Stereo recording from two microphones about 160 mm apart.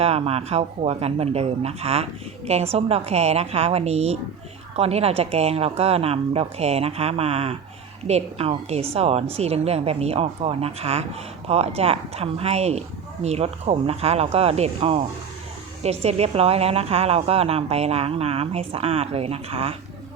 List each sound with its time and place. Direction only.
0.0 s a woman's voice: 40° right (ahead or behind)